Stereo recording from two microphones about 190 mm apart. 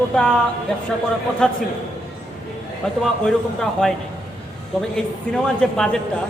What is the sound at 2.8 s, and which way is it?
Speech, 5° left (ahead or behind).